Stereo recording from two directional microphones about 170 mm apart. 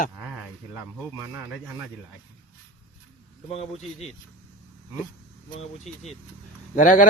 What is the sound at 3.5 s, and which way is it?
Speech, 35° left (ahead or behind).